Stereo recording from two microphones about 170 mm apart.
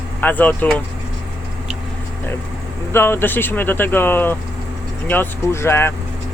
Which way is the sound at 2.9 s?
15° left (ahead or behind).